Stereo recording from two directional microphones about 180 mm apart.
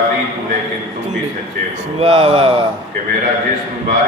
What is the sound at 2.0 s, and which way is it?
Speech, 30° right (ahead or behind).